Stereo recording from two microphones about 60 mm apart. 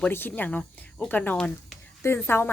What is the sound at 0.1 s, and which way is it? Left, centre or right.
A woman's voice, left.